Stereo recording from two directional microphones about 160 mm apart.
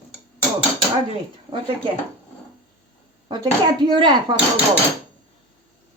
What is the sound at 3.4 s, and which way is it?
Speech, 30° right (ahead or behind).